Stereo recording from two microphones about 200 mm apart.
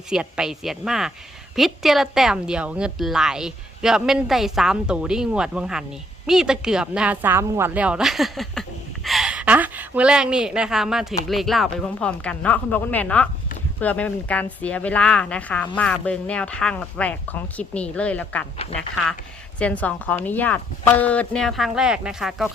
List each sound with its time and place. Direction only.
0.1 s a woman's voice: 5° right (ahead or behind)
18.5 s speech: 35° left (ahead or behind)
18.8 s a woman's voice: centre (ahead or behind)